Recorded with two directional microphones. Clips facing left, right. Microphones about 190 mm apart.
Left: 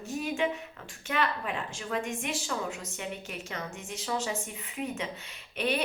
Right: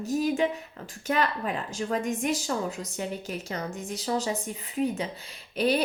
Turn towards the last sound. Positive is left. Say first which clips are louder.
# right 5 dB
turn(degrees=-35)  # may be behind; listen again after turning